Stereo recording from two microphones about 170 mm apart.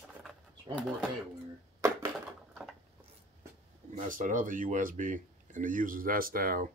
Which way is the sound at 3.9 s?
50° right (ahead or behind).